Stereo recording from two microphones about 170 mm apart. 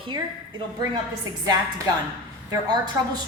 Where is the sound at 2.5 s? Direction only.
25° right (ahead or behind).